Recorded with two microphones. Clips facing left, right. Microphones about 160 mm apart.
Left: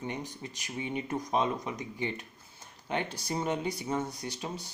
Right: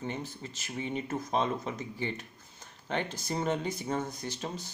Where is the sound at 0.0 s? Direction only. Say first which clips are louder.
Even; 15° left (ahead or behind).